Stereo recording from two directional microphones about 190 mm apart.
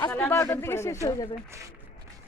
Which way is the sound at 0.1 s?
10° left (ahead or behind).